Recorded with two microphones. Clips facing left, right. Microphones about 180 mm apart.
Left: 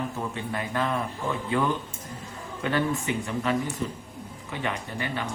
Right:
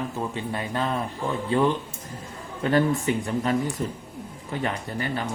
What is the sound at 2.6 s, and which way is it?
Speech, 40° right (ahead or behind).